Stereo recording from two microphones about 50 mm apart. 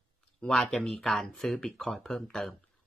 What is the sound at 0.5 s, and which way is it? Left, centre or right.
Speech, centre.